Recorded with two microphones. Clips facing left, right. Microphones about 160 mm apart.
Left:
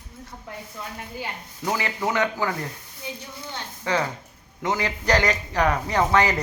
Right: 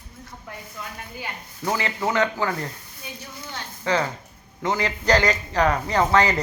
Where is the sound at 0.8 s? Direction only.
30° left (ahead or behind).